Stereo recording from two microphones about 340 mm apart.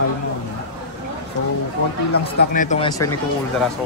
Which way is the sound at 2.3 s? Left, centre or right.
Left.